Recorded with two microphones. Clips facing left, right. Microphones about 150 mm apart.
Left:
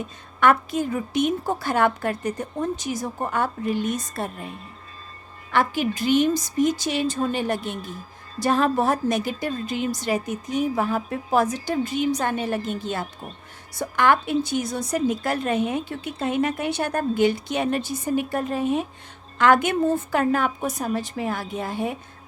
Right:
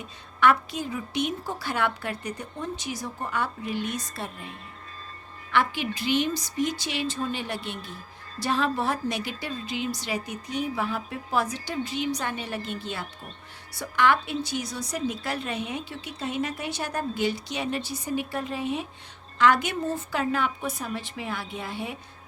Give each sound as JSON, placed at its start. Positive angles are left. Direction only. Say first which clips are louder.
{"t": 0.3, "sound": "a woman's voice", "louder": "left 3 dB", "side_deg": 50}
{"t": 5.5, "sound": "a woman's voice", "louder": "left 4 dB", "side_deg": 45}